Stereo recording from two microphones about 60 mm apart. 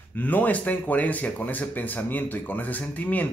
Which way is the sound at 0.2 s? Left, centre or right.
Left.